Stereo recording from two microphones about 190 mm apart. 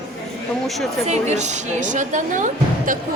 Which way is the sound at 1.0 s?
35° right (ahead or behind).